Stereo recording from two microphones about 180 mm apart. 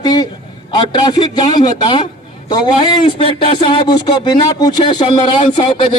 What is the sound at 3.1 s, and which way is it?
Speech, 30° left (ahead or behind).